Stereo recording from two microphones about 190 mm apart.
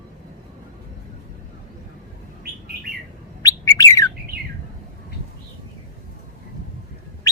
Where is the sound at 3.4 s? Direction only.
15° left (ahead or behind).